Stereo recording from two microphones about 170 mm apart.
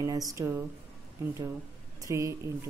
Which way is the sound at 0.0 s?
20° right (ahead or behind).